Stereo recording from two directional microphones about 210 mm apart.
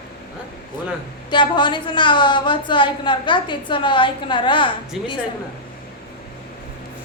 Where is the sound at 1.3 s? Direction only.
20° left (ahead or behind).